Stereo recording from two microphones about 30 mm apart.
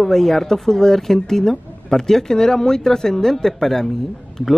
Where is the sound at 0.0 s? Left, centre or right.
Centre.